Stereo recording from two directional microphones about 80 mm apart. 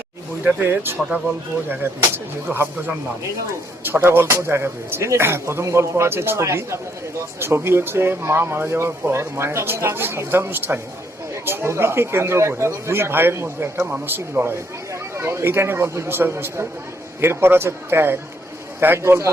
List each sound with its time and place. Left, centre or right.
0.4 s speech: right